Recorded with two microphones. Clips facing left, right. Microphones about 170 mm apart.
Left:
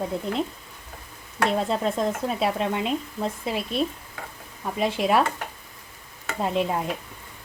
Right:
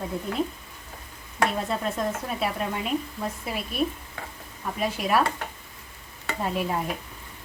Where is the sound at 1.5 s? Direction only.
25° left (ahead or behind).